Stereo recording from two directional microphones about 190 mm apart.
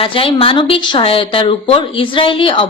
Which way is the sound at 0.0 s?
30° left (ahead or behind).